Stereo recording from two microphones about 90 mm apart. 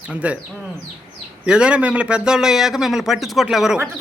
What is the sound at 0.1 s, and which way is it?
Speech, 15° right (ahead or behind).